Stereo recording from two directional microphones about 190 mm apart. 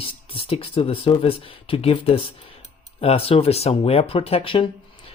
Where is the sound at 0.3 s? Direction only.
30° left (ahead or behind).